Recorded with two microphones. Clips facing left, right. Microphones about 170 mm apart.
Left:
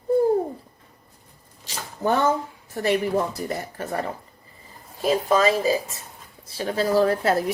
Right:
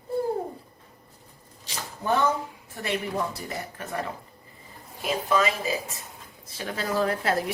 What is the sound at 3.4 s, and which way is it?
Speech, 40° left (ahead or behind).